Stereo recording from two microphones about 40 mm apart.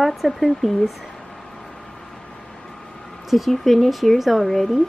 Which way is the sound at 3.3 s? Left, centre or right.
Centre.